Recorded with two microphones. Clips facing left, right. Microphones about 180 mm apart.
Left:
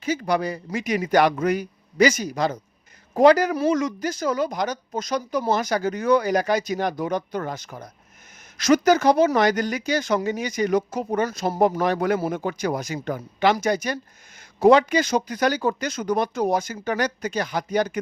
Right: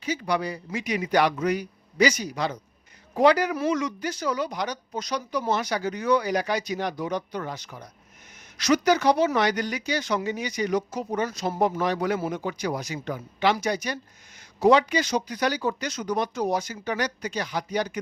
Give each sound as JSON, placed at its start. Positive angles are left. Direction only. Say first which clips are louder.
{"t": 0.0, "sound": "speech", "louder": "left 4 dB", "side_deg": 50}